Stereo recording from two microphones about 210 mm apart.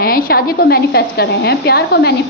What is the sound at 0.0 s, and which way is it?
A woman's voice, 45° left (ahead or behind).